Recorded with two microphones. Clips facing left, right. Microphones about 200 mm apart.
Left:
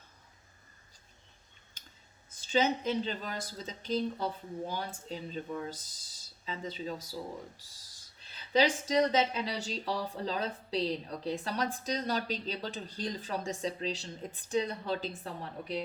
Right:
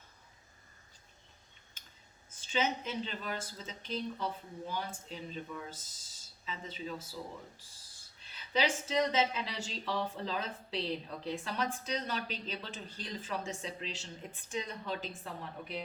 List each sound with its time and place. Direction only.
2.3 s speech: 35° left (ahead or behind)
8.5 s speech: 35° left (ahead or behind)